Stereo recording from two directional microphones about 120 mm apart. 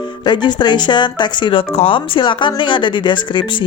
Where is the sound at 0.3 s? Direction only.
40° left (ahead or behind).